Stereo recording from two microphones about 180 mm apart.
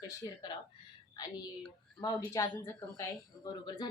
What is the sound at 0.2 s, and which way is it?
Speech, 20° left (ahead or behind).